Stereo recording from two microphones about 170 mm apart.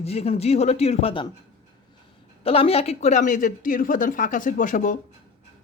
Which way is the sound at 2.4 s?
35° left (ahead or behind).